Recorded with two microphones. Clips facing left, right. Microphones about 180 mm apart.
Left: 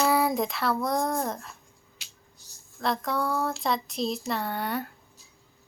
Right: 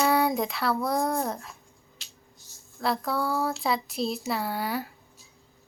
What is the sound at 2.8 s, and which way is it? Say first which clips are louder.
Speech: even; centre (ahead or behind).